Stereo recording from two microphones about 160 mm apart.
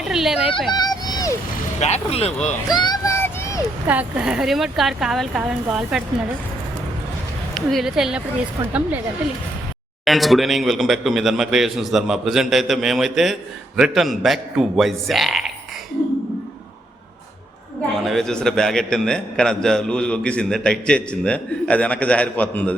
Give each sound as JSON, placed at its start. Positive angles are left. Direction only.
{"t": 0.0, "sound": "a sound", "side_deg": 0}
{"t": 0.7, "sound": "vehicle", "side_deg": 25}
{"t": 1.8, "sound": "speech", "side_deg": 40}
{"t": 2.6, "sound": "a sound", "side_deg": 25}
{"t": 3.8, "sound": "a man's voice", "side_deg": -10}
{"t": 7.5, "sound": "a man's voice", "side_deg": 0}
{"t": 10.0, "sound": "a man's voice", "side_deg": 0}
{"t": 18.0, "sound": "a man's voice", "side_deg": 0}